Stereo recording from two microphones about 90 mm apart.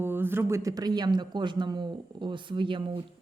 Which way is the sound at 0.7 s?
50° right (ahead or behind).